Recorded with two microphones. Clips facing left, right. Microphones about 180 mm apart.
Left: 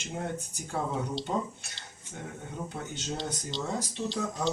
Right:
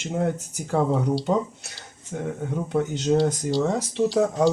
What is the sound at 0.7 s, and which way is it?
Speech, 75° right (ahead or behind).